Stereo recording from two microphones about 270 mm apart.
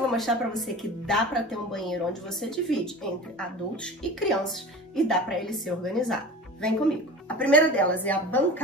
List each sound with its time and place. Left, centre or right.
0.1 s a woman's voice: centre